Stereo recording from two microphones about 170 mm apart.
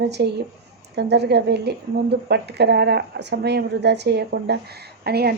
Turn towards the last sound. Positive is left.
turn(degrees=-70)  # may be behind; listen again after turning